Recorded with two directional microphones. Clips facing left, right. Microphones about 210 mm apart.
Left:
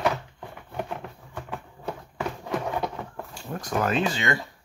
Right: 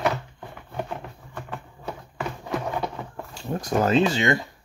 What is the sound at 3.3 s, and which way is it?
Speech, 25° right (ahead or behind).